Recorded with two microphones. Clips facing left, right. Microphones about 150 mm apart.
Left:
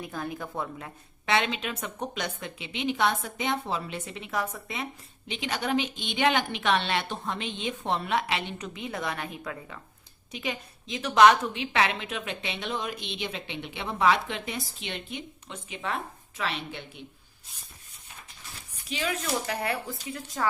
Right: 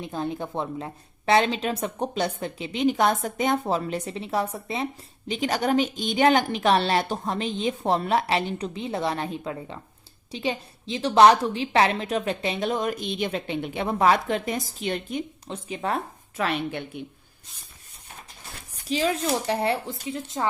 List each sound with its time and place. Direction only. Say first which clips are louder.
0.0 s a woman's voice: right 5 dB; 25° right (ahead or behind)
5.3 s a woman's voice: right 5 dB; 40° right (ahead or behind)
16.4 s a woman's voice: right 7 dB; 50° right (ahead or behind)
18.9 s speech: right 6 dB; 35° right (ahead or behind)